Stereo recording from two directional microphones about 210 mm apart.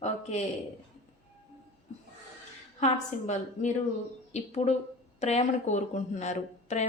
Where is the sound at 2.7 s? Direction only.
35° left (ahead or behind).